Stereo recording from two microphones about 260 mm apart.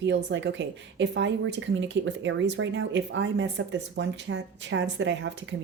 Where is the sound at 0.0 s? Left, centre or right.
Right.